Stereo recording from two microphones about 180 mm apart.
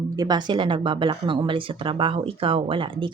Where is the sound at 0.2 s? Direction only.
25° right (ahead or behind).